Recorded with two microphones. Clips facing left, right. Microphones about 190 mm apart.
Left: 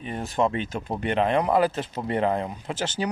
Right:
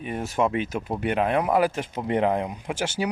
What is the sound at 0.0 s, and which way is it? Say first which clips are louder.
Speech: even; 10° right (ahead or behind).